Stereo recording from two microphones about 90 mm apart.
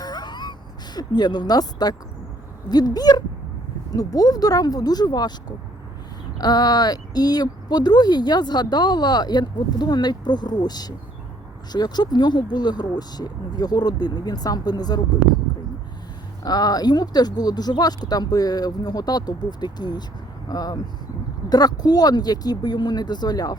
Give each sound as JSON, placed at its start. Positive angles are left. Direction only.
{"t": 0.0, "sound": "gasp", "side_deg": 50}
{"t": 0.9, "sound": "speech", "side_deg": 50}
{"t": 6.4, "sound": "speech", "side_deg": 45}
{"t": 16.4, "sound": "speech", "side_deg": 45}